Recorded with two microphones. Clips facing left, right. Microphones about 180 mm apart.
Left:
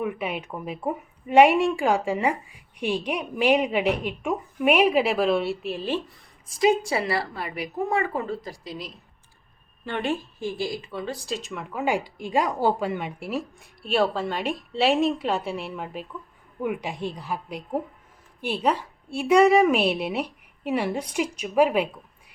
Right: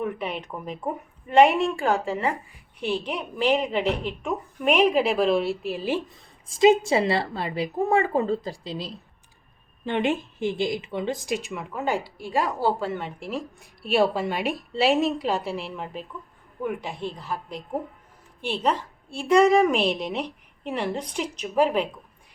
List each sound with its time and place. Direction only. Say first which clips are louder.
0.0 s a woman's voice: left 1 dB; 10° left (ahead or behind)
6.6 s a woman's voice: right 4 dB; 25° right (ahead or behind)
9.8 s a woman's voice: right 3 dB; 20° right (ahead or behind)
11.5 s a woman's voice: left 1 dB; centre (ahead or behind)
11.9 s a woman's voice: left 2 dB; 15° left (ahead or behind)
13.8 s a woman's voice: right 2 dB; 10° right (ahead or behind)
16.6 s a woman's voice: left 1 dB; 15° left (ahead or behind)